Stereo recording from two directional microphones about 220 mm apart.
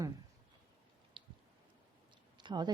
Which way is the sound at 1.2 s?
25° right (ahead or behind).